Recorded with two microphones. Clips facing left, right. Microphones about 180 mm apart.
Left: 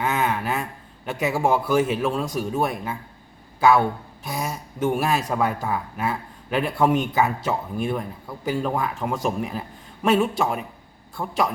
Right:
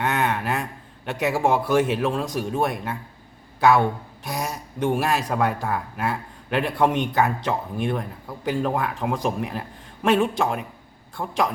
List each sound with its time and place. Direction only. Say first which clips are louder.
0.0 s a man's voice: even; centre (ahead or behind)